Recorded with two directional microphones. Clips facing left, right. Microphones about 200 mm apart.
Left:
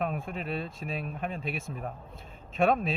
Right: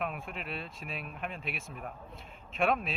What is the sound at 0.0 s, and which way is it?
Speech, 40° left (ahead or behind).